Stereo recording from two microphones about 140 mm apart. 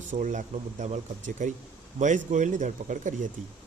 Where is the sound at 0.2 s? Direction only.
65° right (ahead or behind).